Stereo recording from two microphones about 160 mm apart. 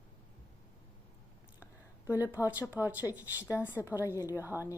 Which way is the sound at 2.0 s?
10° right (ahead or behind).